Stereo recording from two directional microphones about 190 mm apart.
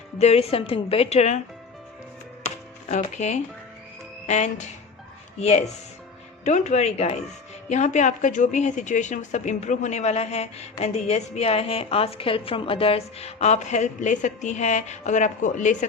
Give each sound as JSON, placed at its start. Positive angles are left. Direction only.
{"t": 0.2, "sound": "a woman's voice", "side_deg": 35}
{"t": 2.9, "sound": "a woman's voice", "side_deg": 35}